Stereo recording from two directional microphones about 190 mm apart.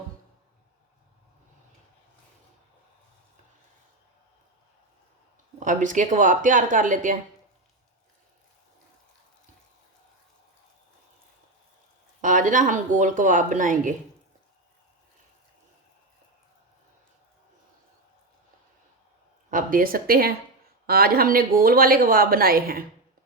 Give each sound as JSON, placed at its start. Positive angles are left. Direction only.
{"t": 5.5, "sound": "speech", "side_deg": -40}
{"t": 12.2, "sound": "speech", "side_deg": -40}
{"t": 19.5, "sound": "speech", "side_deg": -45}